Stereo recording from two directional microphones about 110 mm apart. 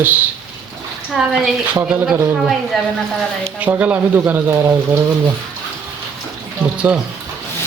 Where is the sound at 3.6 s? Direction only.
15° right (ahead or behind).